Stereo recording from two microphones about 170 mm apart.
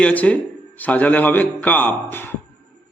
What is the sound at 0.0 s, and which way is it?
A man's voice, 10° left (ahead or behind).